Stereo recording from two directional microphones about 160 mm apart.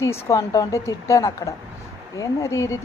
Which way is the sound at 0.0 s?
15° left (ahead or behind).